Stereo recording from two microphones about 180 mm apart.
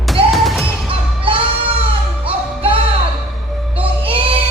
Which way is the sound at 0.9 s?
30° right (ahead or behind).